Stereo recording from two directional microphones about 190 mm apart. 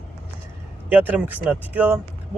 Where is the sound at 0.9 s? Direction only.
10° right (ahead or behind).